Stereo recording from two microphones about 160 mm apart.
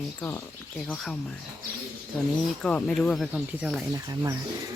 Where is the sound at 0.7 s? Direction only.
Centre (ahead or behind).